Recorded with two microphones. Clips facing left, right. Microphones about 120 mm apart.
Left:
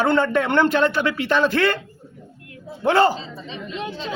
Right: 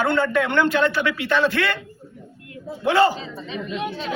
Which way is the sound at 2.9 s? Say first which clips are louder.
Left 1 dB; 45° left (ahead or behind).